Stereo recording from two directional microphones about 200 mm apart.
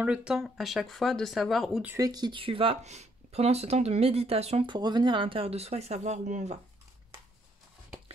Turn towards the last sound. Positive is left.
turn(degrees=-35)  # may be behind; listen again after turning